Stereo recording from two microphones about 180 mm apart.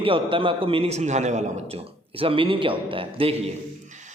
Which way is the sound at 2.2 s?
30° right (ahead or behind).